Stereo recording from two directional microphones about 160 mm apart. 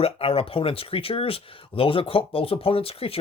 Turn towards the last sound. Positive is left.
turn(degrees=35)  # may be behind; listen again after turning